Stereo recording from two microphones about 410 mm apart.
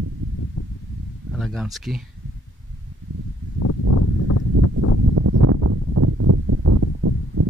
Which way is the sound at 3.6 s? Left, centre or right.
Left.